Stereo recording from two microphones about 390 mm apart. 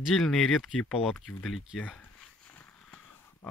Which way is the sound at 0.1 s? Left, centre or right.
Centre.